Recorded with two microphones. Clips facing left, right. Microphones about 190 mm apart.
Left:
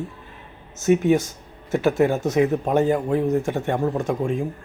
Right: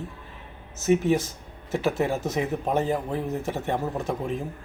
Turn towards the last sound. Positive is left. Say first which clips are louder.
# left 6 dB
turn(degrees=0)  # may be behind; listen again after turning